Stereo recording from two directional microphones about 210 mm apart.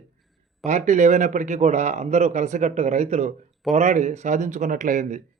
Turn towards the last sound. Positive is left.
turn(degrees=-35)  # may be behind; listen again after turning